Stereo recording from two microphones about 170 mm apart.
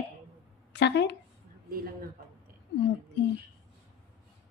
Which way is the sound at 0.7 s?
90° left.